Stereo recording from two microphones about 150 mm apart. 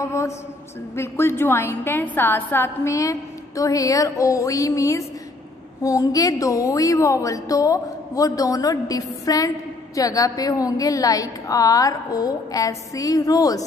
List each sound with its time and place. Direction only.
0.0 s a woman's voice: 20° left (ahead or behind)